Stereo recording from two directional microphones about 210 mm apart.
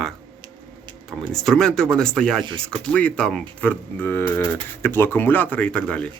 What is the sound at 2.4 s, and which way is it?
Speech, 25° right (ahead or behind).